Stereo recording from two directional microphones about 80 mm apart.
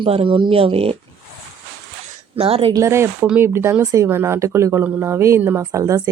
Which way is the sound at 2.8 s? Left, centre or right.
Right.